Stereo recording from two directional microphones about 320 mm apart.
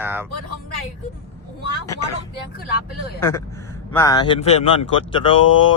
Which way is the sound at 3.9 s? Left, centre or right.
Centre.